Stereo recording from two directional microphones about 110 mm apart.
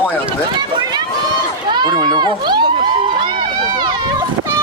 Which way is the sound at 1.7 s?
40° right (ahead or behind).